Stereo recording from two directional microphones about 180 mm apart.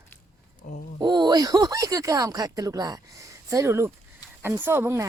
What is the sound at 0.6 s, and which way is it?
Speech, 45° left (ahead or behind).